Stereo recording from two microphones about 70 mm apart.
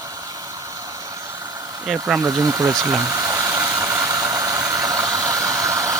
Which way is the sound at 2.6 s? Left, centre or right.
Right.